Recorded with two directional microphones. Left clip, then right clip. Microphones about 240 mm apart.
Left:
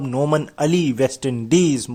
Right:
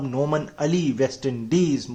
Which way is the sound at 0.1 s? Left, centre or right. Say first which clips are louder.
Left 5 dB; left.